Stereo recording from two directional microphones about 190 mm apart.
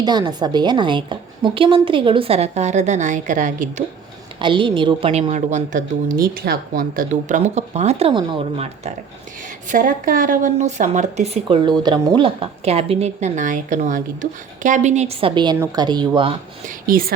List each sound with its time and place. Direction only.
0.0 s a woman's voice: 20° right (ahead or behind); by 3.8 s 40° right (ahead or behind)
4.4 s speech: 25° right (ahead or behind)
12.2 s a woman's voice: 30° right (ahead or behind)
16.6 s speech: 50° right (ahead or behind)